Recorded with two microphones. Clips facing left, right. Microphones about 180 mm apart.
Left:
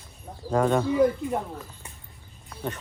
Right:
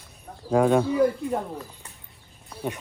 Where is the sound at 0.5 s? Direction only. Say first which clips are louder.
Right 3 dB; 10° right (ahead or behind).